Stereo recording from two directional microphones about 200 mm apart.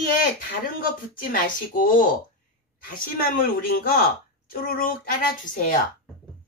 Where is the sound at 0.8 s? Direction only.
45° left (ahead or behind).